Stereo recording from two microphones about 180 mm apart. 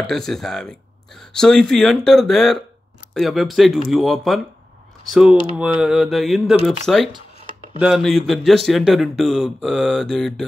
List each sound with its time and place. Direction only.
0.0 s speech: centre (ahead or behind)
7.3 s a sound: 30° left (ahead or behind)
7.8 s speech: centre (ahead or behind)